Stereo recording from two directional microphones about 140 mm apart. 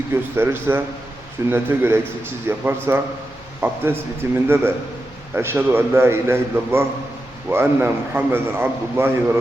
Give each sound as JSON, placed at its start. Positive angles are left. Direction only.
{"t": 0.1, "sound": "a man's voice", "side_deg": -15}